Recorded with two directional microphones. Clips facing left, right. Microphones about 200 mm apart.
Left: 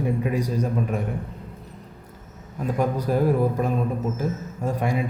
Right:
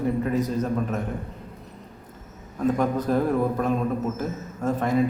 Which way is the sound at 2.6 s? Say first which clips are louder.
Right 2 dB; 10° left (ahead or behind).